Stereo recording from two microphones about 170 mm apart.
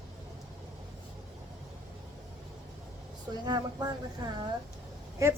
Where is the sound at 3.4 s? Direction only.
25° right (ahead or behind).